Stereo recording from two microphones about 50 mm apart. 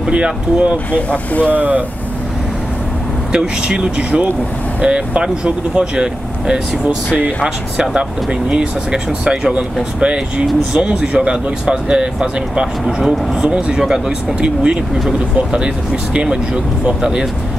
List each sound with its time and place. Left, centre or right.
0.1 s speech: right
0.9 s speech: left
3.3 s speech: centre
7.1 s speech: left
7.4 s speech: centre
12.8 s speech: centre
13.4 s speech: right